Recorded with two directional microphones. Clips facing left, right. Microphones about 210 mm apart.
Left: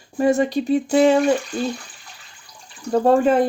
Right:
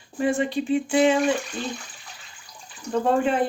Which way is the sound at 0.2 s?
40° left (ahead or behind).